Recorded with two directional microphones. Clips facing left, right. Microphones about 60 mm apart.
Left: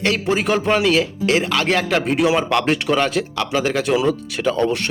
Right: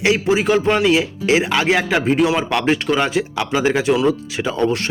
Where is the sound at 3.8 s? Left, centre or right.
Centre.